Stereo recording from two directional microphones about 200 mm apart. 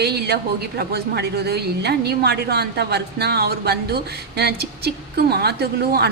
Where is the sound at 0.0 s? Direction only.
55° right (ahead or behind).